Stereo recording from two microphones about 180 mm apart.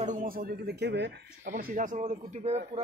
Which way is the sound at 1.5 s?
45° right (ahead or behind).